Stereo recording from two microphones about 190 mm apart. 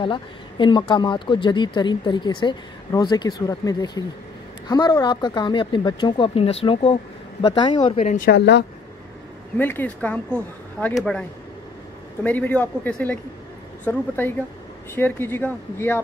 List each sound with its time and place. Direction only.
0.0 s speech: 25° left (ahead or behind)
8.3 s speech: 65° left (ahead or behind)
9.6 s speech: 10° left (ahead or behind)